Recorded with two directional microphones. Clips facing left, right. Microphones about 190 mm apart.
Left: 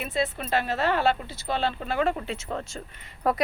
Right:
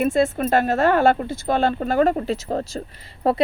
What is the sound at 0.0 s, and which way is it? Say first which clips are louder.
A woman's voice: right 10 dB; 50° right (ahead or behind).